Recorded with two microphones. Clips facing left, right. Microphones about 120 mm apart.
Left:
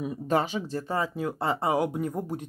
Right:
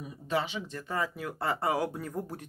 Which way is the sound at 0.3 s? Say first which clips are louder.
Left 5 dB; 45° left (ahead or behind).